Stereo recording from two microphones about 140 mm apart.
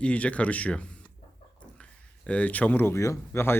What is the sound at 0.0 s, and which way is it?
Speech, 10° left (ahead or behind).